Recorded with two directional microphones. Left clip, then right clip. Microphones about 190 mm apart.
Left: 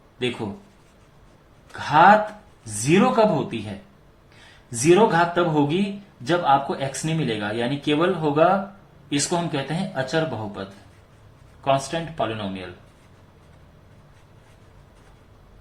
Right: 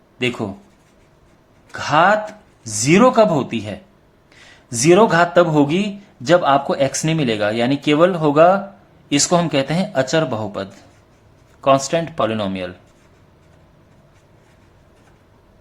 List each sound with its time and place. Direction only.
1.7 s speech: 50° right (ahead or behind)
11.6 s speech: 55° right (ahead or behind)